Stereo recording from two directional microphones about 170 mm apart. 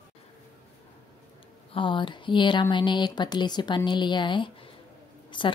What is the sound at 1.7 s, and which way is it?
Speech, 30° left (ahead or behind).